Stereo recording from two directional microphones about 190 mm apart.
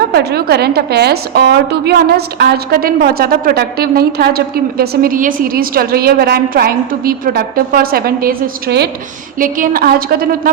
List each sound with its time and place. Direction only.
0.1 s a woman's voice: 55° right (ahead or behind)